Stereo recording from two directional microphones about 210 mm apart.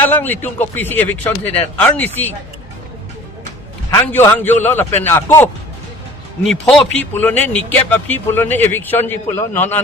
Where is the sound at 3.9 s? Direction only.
10° left (ahead or behind).